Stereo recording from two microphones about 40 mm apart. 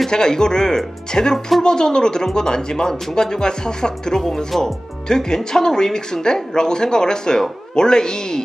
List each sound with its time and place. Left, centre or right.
0.1 s speech: centre